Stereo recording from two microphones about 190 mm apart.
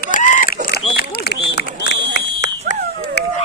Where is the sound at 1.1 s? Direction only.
55° left (ahead or behind).